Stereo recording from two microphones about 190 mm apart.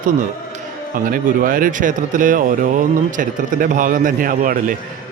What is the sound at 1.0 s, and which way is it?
Speech, 50° right (ahead or behind).